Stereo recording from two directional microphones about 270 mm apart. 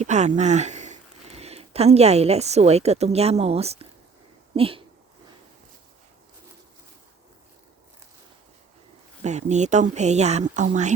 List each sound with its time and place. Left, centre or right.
0.0 s speech: right
9.2 s speech: right